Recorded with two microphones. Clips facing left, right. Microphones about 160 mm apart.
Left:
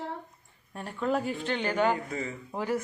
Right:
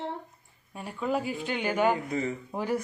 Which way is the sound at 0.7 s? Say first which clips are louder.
Left 1 dB; 5° right (ahead or behind).